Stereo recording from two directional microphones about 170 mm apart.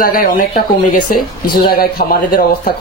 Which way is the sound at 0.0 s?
55° left (ahead or behind).